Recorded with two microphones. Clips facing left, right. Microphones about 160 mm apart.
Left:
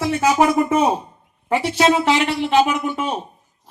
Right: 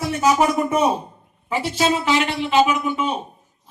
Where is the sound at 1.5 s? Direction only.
65° left (ahead or behind).